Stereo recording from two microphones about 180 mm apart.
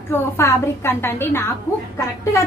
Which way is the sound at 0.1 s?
15° left (ahead or behind).